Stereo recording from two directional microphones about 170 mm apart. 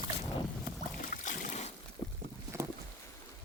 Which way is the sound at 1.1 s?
45° left (ahead or behind).